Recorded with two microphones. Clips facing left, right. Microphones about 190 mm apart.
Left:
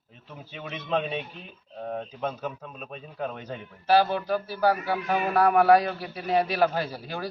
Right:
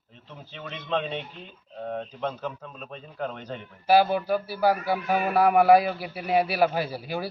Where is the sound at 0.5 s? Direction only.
10° left (ahead or behind).